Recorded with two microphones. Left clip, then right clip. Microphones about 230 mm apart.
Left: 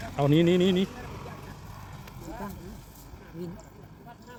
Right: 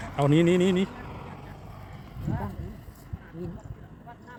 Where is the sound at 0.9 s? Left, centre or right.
Left.